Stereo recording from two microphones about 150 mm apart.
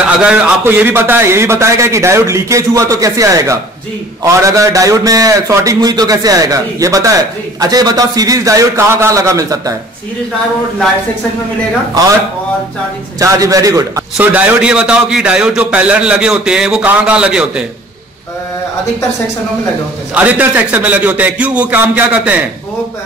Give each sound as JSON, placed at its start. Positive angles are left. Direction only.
{"t": 0.0, "sound": "a man's voice", "side_deg": -5}
{"t": 13.2, "sound": "a man's voice", "side_deg": -20}
{"t": 14.1, "sound": "a man's voice", "side_deg": -10}
{"t": 20.2, "sound": "a man's voice", "side_deg": -10}